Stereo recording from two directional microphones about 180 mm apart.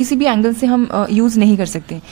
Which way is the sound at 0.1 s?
25° right (ahead or behind).